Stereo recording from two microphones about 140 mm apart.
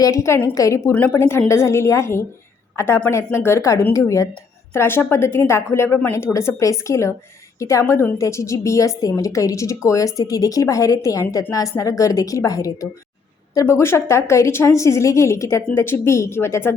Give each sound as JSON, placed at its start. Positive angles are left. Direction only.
{"t": 0.0, "sound": "a woman's voice", "side_deg": 20}